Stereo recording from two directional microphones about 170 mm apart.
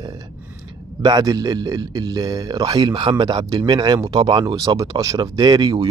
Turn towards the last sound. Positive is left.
turn(degrees=-20)  # may be behind; listen again after turning